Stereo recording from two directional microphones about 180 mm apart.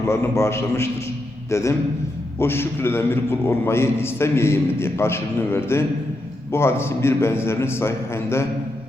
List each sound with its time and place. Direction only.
0.0 s a man's voice: 15° left (ahead or behind)